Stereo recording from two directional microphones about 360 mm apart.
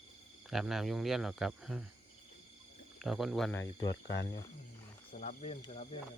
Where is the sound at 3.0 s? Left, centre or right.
Centre.